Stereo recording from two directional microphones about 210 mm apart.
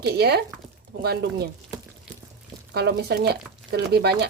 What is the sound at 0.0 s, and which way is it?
Speech, 50° right (ahead or behind).